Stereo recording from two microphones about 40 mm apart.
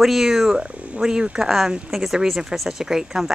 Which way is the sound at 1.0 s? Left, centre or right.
Centre.